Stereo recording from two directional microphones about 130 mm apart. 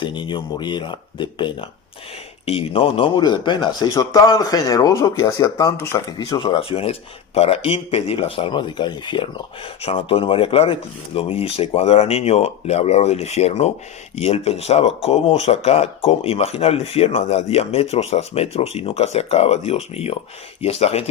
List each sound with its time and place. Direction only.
0.0 s speech: 35° left (ahead or behind)
6.6 s speech: 45° left (ahead or behind)